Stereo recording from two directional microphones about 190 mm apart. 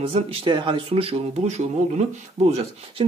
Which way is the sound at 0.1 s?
30° right (ahead or behind).